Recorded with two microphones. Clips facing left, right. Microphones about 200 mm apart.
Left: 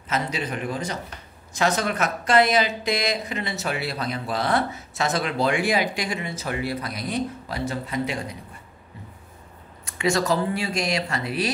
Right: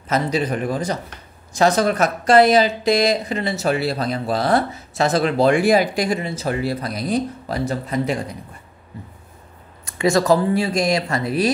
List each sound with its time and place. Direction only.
0.1 s speech: 40° right (ahead or behind)
9.9 s speech: 35° right (ahead or behind)